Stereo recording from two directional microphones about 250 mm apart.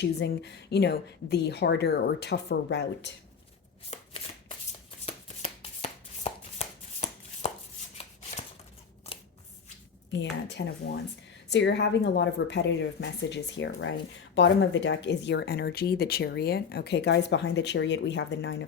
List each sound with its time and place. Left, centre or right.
0.0 s speech: left
3.8 s shuffling cards: left
5.0 s chopping: left
10.1 s speech: left